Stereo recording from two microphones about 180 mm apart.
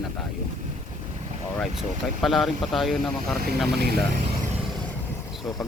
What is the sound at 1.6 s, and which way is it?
Speech, centre (ahead or behind).